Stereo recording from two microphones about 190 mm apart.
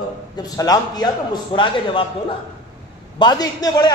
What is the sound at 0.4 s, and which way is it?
A man's voice, 20° left (ahead or behind).